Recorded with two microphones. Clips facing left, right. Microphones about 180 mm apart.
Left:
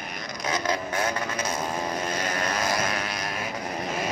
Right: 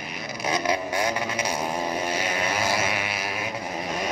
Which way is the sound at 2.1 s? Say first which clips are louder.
Right 1 dB; 5° right (ahead or behind).